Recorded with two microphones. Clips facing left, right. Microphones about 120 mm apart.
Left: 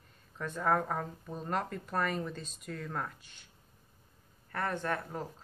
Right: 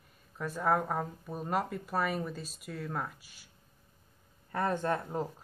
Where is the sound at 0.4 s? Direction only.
5° right (ahead or behind).